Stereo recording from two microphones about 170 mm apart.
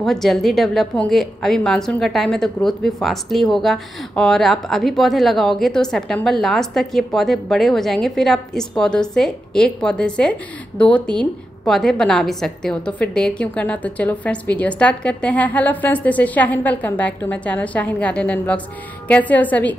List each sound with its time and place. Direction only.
0.0 s a woman's voice: centre (ahead or behind)